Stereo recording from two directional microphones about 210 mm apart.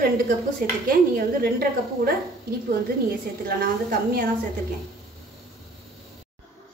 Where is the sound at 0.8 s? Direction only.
45° right (ahead or behind).